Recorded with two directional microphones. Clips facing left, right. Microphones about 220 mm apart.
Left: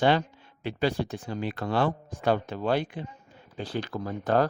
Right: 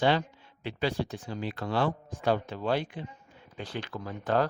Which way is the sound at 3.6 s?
35° left (ahead or behind).